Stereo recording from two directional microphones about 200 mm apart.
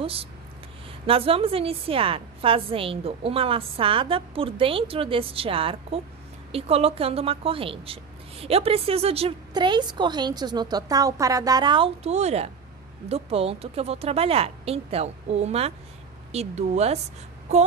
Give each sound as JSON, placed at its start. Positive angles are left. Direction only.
{"t": 0.0, "sound": "speech", "side_deg": -30}